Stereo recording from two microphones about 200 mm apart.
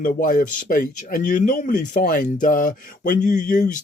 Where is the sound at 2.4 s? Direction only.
40° left (ahead or behind).